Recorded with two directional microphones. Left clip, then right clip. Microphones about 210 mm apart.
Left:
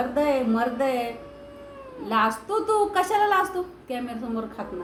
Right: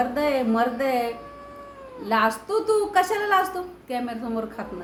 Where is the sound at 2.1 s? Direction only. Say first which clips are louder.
Right 1 dB; 15° right (ahead or behind).